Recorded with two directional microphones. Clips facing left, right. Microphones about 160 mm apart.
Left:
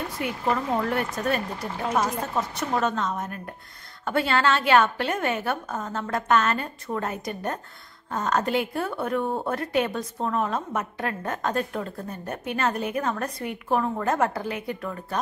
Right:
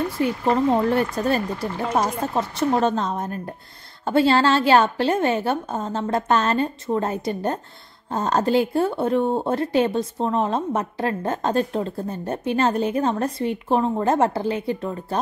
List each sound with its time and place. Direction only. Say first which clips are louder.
0.2 s a woman's voice: right 6 dB; 30° right (ahead or behind)